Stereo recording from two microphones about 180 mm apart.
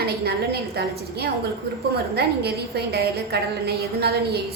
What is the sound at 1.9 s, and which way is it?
A woman's voice, 65° right (ahead or behind).